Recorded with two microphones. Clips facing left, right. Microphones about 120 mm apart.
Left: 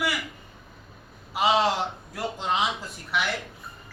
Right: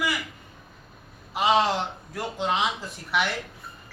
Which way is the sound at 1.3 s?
Centre (ahead or behind).